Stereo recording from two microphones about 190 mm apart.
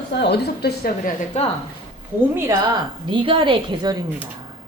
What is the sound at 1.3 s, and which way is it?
Speech, 35° left (ahead or behind).